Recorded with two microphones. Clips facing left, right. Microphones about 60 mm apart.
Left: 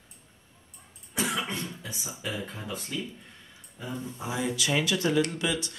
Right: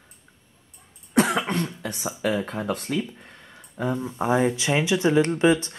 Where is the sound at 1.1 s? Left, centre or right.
Right.